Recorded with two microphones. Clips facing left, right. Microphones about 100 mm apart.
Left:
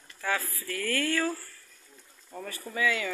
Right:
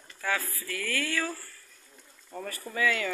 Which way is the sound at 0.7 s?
40° left (ahead or behind).